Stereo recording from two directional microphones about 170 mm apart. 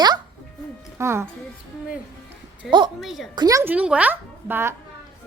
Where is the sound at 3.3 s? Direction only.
20° right (ahead or behind).